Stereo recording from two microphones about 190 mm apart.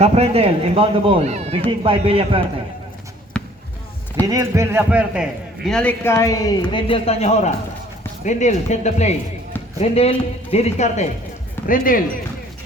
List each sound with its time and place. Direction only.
0.0 s a man's voice: 30° right (ahead or behind)
3.3 s basketball bounce: 5° left (ahead or behind)
4.3 s a man's voice: 15° right (ahead or behind)
5.6 s a woman's voice: 5° left (ahead or behind); by 11.0 s 35° left (ahead or behind)
11.7 s speech: 45° left (ahead or behind)